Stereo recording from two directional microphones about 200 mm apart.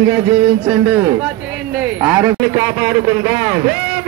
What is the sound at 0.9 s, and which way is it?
A man's voice, 5° right (ahead or behind).